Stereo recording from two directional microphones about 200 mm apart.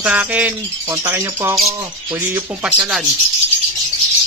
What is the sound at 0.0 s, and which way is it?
Speech, 5° right (ahead or behind).